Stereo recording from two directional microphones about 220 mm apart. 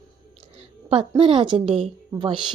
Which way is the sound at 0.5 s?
25° right (ahead or behind).